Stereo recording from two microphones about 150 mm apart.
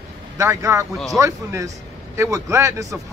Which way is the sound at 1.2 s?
20° right (ahead or behind).